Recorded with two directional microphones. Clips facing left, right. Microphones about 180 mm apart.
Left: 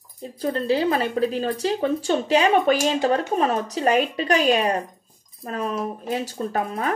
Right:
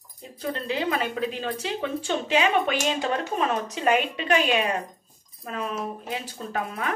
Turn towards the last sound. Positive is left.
turn(degrees=40)  # may be behind; listen again after turning